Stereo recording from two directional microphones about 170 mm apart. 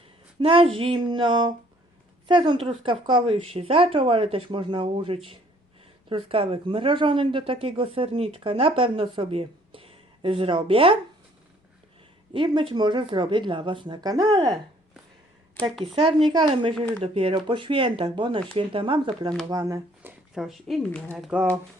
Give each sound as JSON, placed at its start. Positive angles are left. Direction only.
{"t": 0.3, "sound": "speech", "side_deg": -30}
{"t": 12.3, "sound": "speech", "side_deg": -30}
{"t": 15.8, "sound": "speech", "side_deg": -30}
{"t": 20.0, "sound": "speech", "side_deg": -5}